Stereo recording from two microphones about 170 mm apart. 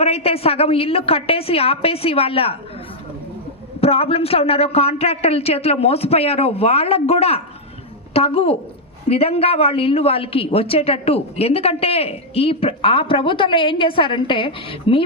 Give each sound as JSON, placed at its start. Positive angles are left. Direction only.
{"t": 0.0, "sound": "speech", "side_deg": 35}
{"t": 3.8, "sound": "speech", "side_deg": 35}